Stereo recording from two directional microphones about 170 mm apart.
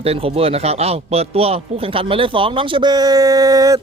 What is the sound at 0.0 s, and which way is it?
A man's voice, 35° right (ahead or behind).